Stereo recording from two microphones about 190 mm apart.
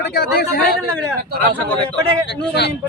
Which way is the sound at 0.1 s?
55° left (ahead or behind).